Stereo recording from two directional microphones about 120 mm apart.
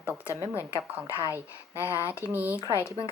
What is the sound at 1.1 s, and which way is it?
Speech, 25° left (ahead or behind).